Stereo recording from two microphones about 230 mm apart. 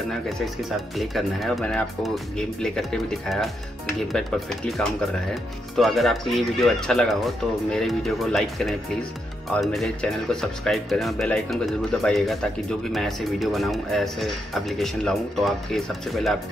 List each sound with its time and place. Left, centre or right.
0.7 s speech: centre